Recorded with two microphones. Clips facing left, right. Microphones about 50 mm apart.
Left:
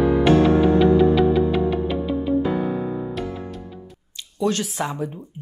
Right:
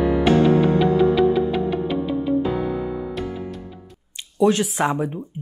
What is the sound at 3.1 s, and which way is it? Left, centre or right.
Music, centre.